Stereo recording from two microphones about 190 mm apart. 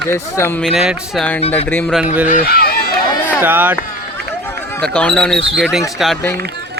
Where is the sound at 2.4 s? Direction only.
55° left (ahead or behind).